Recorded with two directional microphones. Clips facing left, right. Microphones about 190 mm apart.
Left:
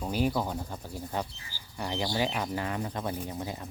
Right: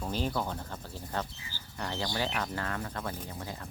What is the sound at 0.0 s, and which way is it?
Speech, 10° left (ahead or behind).